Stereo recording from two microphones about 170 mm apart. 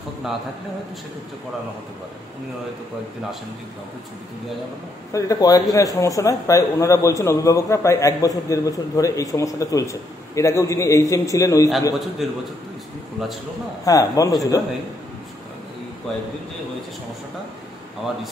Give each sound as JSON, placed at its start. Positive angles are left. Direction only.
{"t": 5.1, "sound": "a man's voice", "side_deg": 20}
{"t": 12.2, "sound": "a man's voice", "side_deg": 0}
{"t": 13.8, "sound": "a man's voice", "side_deg": 20}